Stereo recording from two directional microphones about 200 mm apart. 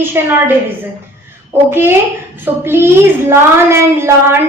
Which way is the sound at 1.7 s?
10° right (ahead or behind).